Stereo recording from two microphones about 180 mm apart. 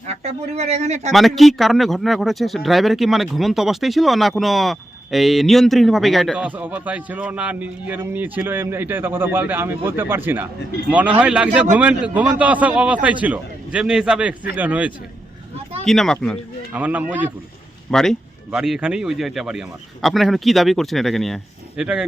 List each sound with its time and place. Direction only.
0.1 s speech: 35° right (ahead or behind)
1.1 s speech: centre (ahead or behind)
15.8 s speech: centre (ahead or behind)
16.7 s speech: 10° right (ahead or behind)
17.9 s speech: centre (ahead or behind)